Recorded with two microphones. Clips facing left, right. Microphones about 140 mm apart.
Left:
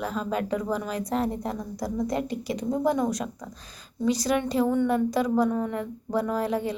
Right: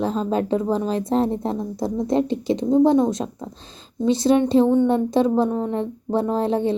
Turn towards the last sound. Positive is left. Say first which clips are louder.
# right 6 dB
turn(degrees=-30)  # may be behind; listen again after turning